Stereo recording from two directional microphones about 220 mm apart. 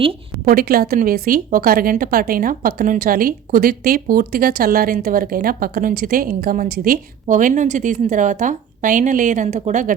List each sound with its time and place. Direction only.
0.4 s a woman's voice: 45° right (ahead or behind)